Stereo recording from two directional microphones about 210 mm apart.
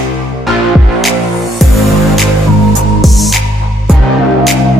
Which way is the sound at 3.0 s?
Centre (ahead or behind).